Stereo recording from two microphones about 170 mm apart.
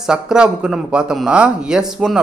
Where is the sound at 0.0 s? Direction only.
5° right (ahead or behind).